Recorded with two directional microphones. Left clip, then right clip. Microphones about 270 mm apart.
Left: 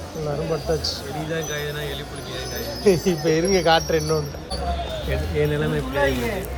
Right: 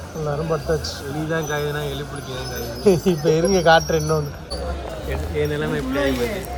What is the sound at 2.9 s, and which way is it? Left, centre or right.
Speech, left.